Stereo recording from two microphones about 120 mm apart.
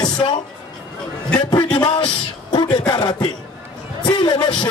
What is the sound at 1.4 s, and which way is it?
A man's voice, 40° left (ahead or behind).